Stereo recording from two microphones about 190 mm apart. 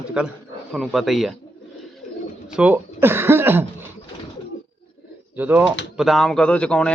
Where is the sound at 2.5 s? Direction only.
5° right (ahead or behind).